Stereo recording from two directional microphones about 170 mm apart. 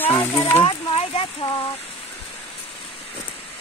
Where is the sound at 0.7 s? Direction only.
35° left (ahead or behind).